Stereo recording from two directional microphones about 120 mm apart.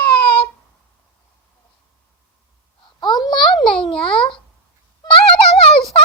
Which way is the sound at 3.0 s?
35° left (ahead or behind).